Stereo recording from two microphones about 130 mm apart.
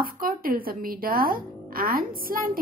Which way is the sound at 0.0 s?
90° right.